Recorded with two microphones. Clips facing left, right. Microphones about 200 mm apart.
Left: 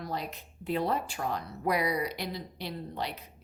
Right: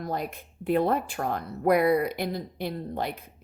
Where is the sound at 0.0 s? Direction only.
50° right (ahead or behind).